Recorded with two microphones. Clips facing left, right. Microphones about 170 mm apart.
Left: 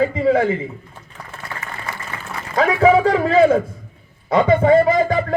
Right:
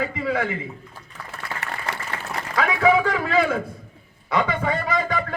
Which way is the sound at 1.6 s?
70° right (ahead or behind).